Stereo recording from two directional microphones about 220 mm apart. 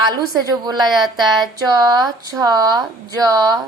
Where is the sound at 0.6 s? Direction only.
20° right (ahead or behind).